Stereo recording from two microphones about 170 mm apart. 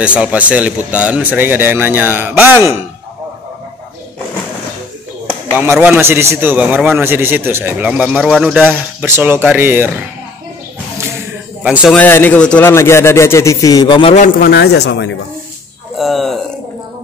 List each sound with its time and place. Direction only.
0.0 s a man's voice: 5° right (ahead or behind)
5.6 s a man's voice: 10° right (ahead or behind)
9.0 s a man's voice: 15° right (ahead or behind)
11.6 s speech: 5° right (ahead or behind)
12.0 s speech: 10° left (ahead or behind); by 14.1 s 25° left (ahead or behind)
14.1 s a man's voice: 50° left (ahead or behind)
14.5 s speech: 70° left (ahead or behind); by 15.1 s 90° left
16.0 s a sound: centre (ahead or behind)